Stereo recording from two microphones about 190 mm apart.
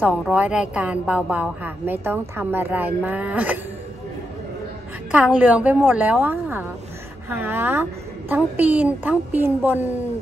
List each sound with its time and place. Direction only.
0.0 s a woman's voice: 5° right (ahead or behind)
5.1 s a woman's voice: 5° right (ahead or behind)